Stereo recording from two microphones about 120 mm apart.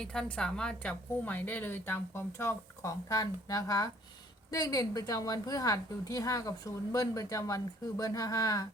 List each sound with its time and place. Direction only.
0.0 s a woman's voice: 5° left (ahead or behind); by 8.6 s 30° left (ahead or behind)